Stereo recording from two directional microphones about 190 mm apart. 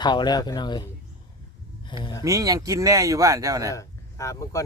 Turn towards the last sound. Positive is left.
turn(degrees=15)  # may be behind; listen again after turning